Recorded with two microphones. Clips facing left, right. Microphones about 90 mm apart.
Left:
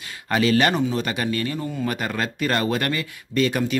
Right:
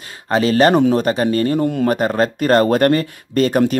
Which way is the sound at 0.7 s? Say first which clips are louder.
Right 9 dB; 50° right (ahead or behind).